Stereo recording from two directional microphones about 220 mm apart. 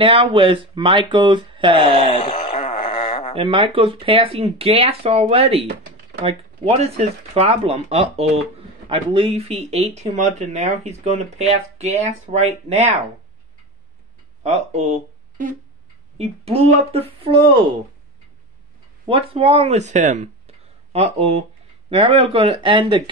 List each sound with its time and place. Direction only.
0.0 s speech: 25° right (ahead or behind)
1.9 s wail: 25° left (ahead or behind)
3.3 s speech: 25° right (ahead or behind)
14.4 s speech: 30° right (ahead or behind)
19.0 s speech: 25° right (ahead or behind)